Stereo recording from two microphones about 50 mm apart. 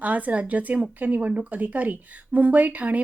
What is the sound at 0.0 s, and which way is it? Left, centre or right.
A woman's voice, right.